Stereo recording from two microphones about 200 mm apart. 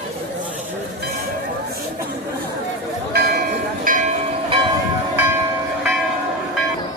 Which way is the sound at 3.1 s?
50° right (ahead or behind).